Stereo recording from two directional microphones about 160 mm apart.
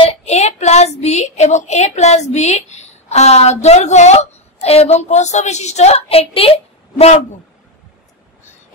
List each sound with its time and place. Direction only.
0.0 s child singing: 40° left (ahead or behind)